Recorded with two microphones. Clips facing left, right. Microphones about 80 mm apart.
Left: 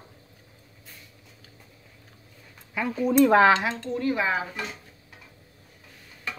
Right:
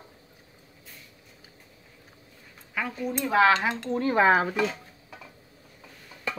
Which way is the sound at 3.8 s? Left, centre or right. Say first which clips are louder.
Even; right.